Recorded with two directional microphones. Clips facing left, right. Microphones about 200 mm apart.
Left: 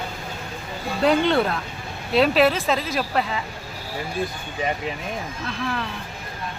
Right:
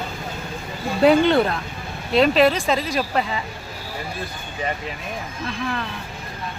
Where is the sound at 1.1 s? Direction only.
Centre (ahead or behind).